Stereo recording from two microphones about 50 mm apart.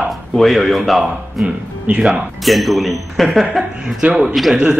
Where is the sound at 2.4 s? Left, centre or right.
Centre.